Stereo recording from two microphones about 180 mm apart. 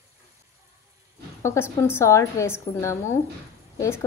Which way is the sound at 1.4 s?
15° left (ahead or behind).